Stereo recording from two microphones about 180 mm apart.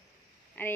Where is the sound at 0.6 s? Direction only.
10° left (ahead or behind).